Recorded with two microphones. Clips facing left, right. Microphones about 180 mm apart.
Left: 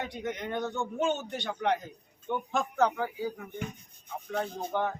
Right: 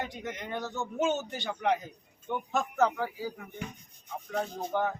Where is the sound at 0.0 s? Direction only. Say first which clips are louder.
Left 2 dB; centre (ahead or behind).